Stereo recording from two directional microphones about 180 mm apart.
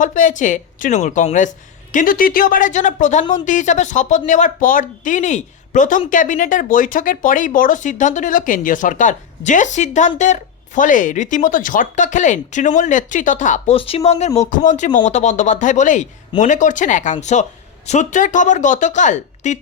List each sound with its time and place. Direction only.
0.0 s speech: 45° left (ahead or behind)
13.7 s speech: 35° left (ahead or behind)